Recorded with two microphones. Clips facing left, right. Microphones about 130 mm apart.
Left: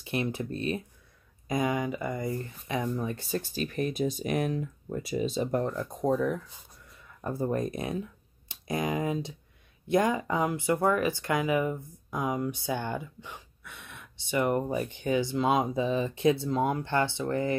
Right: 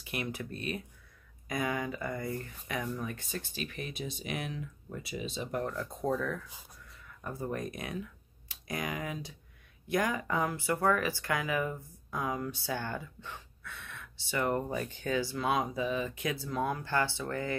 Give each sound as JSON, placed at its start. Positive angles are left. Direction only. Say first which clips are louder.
{"t": 0.0, "sound": "speech", "louder": "left 6 dB", "side_deg": 30}
{"t": 5.7, "sound": "speech", "louder": "left 5 dB", "side_deg": 20}
{"t": 7.2, "sound": "speech", "louder": "left 7 dB", "side_deg": 35}